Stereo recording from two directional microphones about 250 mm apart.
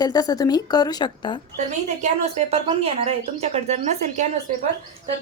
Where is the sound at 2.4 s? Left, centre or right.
Right.